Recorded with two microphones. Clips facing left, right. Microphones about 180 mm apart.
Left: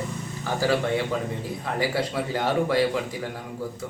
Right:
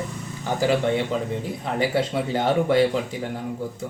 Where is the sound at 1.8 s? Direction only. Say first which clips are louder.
Right 3 dB; 25° right (ahead or behind).